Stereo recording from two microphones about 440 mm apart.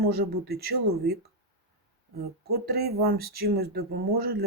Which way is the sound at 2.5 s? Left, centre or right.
Right.